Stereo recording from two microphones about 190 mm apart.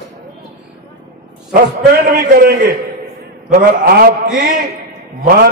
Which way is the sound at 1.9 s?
55° right (ahead or behind).